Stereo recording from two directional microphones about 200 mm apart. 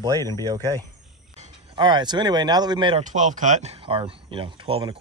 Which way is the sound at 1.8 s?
20° right (ahead or behind).